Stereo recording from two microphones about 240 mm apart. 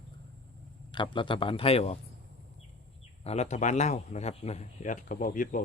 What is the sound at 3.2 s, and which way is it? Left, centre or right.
Speech, left.